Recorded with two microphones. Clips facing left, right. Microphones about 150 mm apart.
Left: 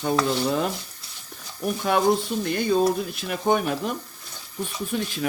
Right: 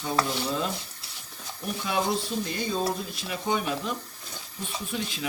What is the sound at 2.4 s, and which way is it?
Speech, 60° left (ahead or behind).